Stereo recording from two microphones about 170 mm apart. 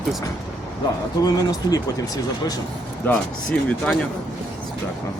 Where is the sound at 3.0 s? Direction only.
5° left (ahead or behind).